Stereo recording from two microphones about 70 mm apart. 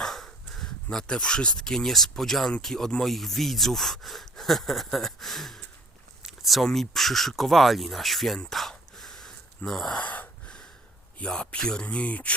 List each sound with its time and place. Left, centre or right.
0.0 s speech: centre
8.4 s a sound: centre
9.6 s speech: centre
10.0 s gasp: left
11.2 s speech: centre